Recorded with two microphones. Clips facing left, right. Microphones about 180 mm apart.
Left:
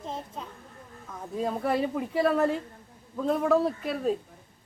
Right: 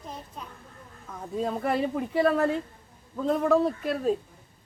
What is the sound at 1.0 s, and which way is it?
Speech, centre (ahead or behind).